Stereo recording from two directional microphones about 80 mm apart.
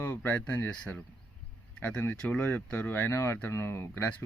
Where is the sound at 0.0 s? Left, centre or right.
Left.